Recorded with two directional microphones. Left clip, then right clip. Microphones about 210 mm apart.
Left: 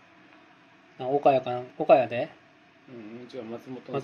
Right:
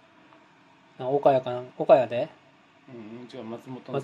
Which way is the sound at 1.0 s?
15° right (ahead or behind).